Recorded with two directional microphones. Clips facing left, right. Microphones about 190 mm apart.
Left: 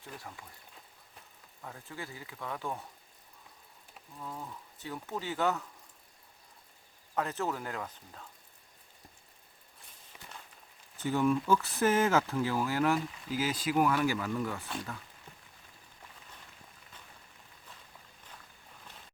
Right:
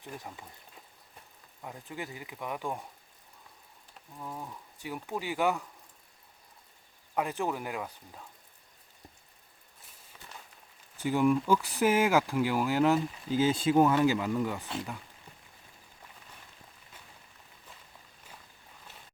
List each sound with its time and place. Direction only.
0.0 s speech: 15° right (ahead or behind)
1.6 s speech: 15° right (ahead or behind)
4.2 s speech: 15° right (ahead or behind)
7.2 s speech: 15° right (ahead or behind)
10.9 s speech: 10° right (ahead or behind)